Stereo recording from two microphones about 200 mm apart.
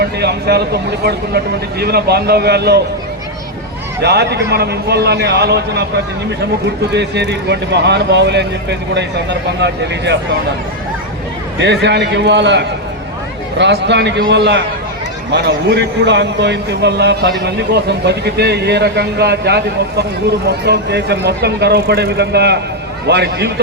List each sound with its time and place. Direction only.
0.0 s speech: 55° right (ahead or behind)
4.0 s a man's voice: 55° right (ahead or behind)
6.9 s a man's voice: 60° right (ahead or behind)
9.6 s a man's voice: 60° right (ahead or behind)
11.6 s a man's voice: 60° right (ahead or behind)